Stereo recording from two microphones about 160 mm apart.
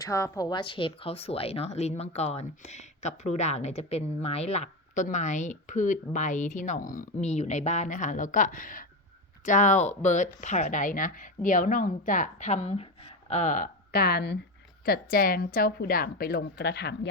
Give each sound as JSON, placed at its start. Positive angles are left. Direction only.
{"t": 0.0, "sound": "speech", "side_deg": 20}
{"t": 14.8, "sound": "a woman's voice", "side_deg": 65}